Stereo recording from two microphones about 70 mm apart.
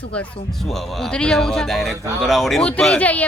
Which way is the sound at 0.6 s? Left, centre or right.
Centre.